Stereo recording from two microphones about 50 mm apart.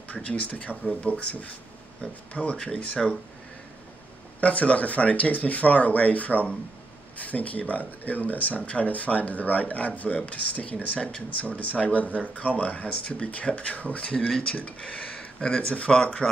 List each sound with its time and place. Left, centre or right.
0.1 s speech: left
4.4 s speech: left